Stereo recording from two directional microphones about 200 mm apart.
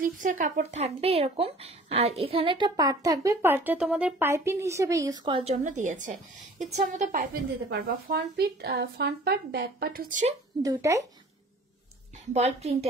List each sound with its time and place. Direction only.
0.0 s a woman's voice: 40° right (ahead or behind)
7.8 s speech: 50° right (ahead or behind)
10.6 s speech: 15° right (ahead or behind)
12.4 s a woman's voice: 30° right (ahead or behind)